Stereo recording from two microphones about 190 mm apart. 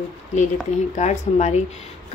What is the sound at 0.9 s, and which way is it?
Speech, 35° left (ahead or behind).